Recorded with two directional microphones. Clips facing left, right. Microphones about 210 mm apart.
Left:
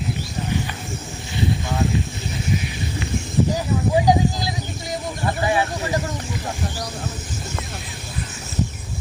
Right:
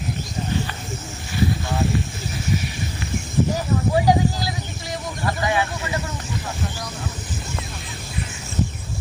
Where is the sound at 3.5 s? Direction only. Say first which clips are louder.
Left 1 dB; 15° left (ahead or behind).